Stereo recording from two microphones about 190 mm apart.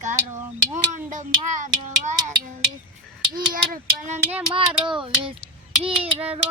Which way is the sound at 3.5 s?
45° right (ahead or behind).